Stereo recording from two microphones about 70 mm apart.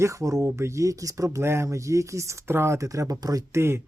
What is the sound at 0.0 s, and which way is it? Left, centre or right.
Speech, right.